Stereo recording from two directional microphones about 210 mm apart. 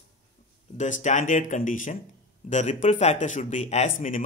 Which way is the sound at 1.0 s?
35° left (ahead or behind).